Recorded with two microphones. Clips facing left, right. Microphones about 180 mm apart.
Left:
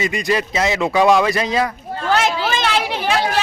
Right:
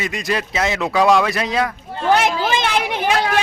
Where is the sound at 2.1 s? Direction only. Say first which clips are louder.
Right 2 dB; 15° right (ahead or behind).